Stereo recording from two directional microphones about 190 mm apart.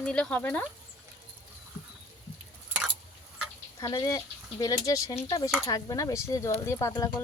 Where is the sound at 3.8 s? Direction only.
20° left (ahead or behind).